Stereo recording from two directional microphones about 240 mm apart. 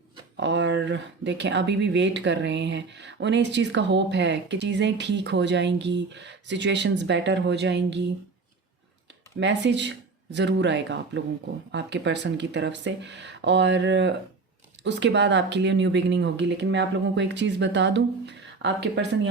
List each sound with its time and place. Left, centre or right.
0.3 s speech: right
9.4 s speech: right